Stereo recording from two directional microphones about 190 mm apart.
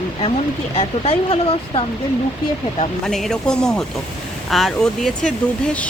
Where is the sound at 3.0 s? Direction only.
Centre (ahead or behind).